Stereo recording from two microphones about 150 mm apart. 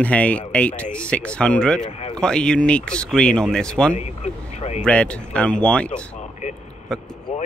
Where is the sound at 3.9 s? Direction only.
45° left (ahead or behind).